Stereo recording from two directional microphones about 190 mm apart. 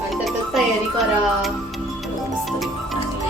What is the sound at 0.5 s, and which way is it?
Music, centre (ahead or behind).